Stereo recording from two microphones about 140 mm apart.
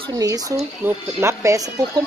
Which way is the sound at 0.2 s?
25° right (ahead or behind).